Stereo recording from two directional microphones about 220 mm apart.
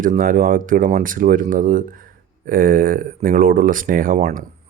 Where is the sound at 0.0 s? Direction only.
40° right (ahead or behind).